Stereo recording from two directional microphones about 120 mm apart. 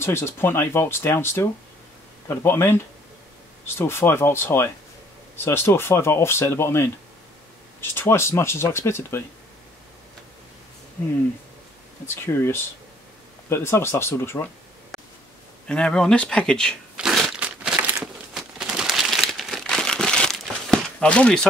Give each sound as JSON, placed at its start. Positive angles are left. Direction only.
{"t": 0.0, "sound": "speech", "side_deg": 20}
{"t": 12.3, "sound": "speech", "side_deg": 20}
{"t": 14.9, "sound": "a sound", "side_deg": 0}
{"t": 15.6, "sound": "speech", "side_deg": 10}
{"t": 16.9, "sound": "crumpling", "side_deg": -5}